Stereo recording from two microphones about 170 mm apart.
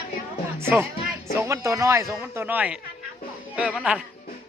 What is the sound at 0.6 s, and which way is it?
Speech, 15° right (ahead or behind).